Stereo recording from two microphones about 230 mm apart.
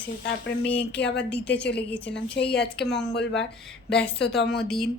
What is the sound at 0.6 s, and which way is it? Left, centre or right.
Speech, centre.